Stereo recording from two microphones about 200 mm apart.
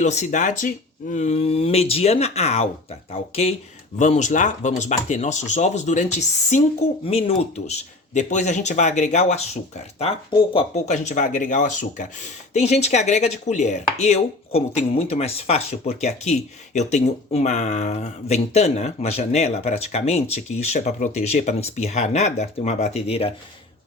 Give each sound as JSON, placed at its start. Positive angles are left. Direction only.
{"t": 0.0, "sound": "speech", "side_deg": 35}